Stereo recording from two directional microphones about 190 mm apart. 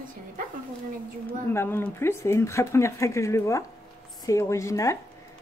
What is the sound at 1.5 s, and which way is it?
Speech, 10° left (ahead or behind).